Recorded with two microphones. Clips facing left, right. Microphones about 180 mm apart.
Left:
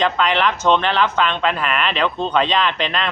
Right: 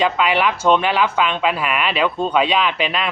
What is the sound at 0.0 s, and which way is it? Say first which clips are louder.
Speech: right 1 dB; 10° right (ahead or behind).